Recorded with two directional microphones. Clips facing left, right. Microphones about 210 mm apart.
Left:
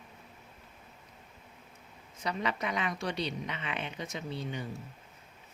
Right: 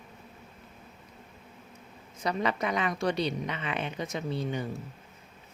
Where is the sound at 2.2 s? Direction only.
45° right (ahead or behind).